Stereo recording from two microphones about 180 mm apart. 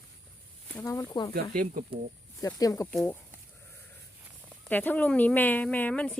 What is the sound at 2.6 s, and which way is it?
Speech, 20° left (ahead or behind).